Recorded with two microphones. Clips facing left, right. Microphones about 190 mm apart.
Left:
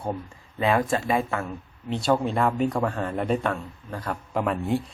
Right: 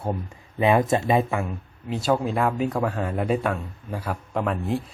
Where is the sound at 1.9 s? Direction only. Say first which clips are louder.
Even; centre (ahead or behind).